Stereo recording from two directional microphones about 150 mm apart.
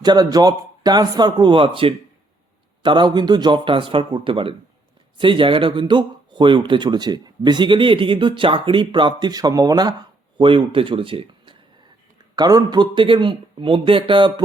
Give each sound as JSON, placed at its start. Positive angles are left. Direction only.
{"t": 0.0, "sound": "speech", "side_deg": -30}
{"t": 12.4, "sound": "speech", "side_deg": -25}